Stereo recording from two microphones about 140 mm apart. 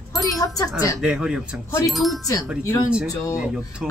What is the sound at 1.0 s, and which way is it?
Speech, 5° right (ahead or behind).